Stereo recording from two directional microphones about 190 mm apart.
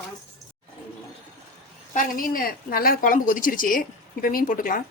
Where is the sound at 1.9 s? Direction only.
45° left (ahead or behind).